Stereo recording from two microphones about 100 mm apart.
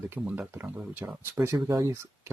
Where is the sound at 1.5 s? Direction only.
35° right (ahead or behind).